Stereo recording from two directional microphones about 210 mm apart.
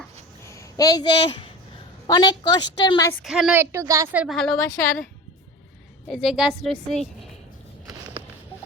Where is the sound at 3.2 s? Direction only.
5° right (ahead or behind).